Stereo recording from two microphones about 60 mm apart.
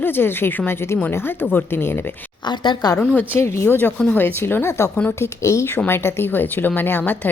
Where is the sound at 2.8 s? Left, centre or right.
Left.